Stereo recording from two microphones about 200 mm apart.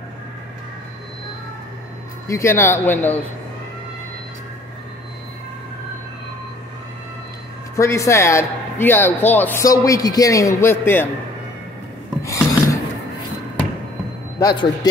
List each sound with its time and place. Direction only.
2.2 s speech: 15° left (ahead or behind)
7.7 s speech: 15° left (ahead or behind)
12.2 s filing: 15° left (ahead or behind)
14.4 s a man's voice: 20° left (ahead or behind)